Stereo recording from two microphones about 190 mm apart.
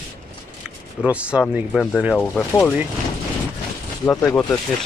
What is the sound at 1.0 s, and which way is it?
Speech, 5° right (ahead or behind).